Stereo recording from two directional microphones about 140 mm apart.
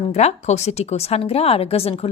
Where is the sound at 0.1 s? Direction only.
50° left (ahead or behind).